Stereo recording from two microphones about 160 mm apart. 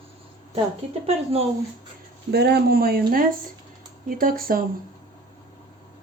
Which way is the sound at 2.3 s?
90° right.